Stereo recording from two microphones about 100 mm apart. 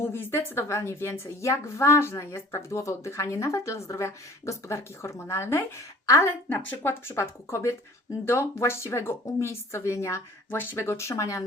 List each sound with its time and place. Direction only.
0.0 s a woman's voice: 25° left (ahead or behind)